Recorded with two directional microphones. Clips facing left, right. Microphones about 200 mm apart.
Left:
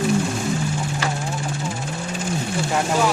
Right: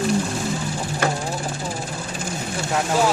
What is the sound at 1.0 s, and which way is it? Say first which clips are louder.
Vehicle: right 6 dB; 55° right (ahead or behind).